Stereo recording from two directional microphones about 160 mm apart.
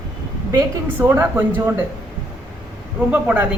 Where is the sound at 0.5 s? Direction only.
15° right (ahead or behind).